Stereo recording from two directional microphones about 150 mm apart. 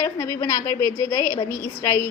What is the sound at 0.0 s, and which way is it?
A woman's voice, 20° left (ahead or behind).